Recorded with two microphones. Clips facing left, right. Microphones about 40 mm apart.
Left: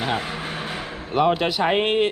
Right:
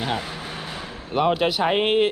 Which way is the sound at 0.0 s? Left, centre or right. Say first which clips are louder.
Left 2 dB; centre.